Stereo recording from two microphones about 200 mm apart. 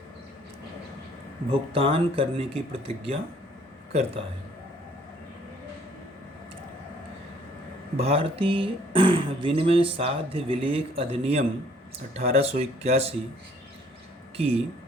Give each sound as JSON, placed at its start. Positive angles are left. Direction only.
{"t": 1.5, "sound": "speech", "side_deg": -25}
{"t": 7.9, "sound": "speech", "side_deg": -30}
{"t": 14.3, "sound": "speech", "side_deg": -30}